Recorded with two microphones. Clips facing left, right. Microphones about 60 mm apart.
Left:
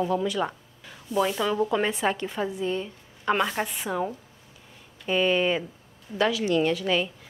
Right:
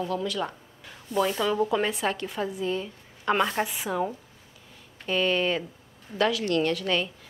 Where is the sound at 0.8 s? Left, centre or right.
Centre.